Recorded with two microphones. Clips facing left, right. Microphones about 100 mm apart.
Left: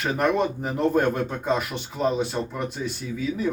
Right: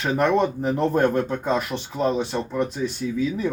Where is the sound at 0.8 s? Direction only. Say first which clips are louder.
Right 1 dB; 35° right (ahead or behind).